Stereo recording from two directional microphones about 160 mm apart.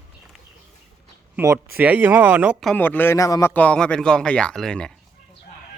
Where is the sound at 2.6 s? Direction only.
10° left (ahead or behind).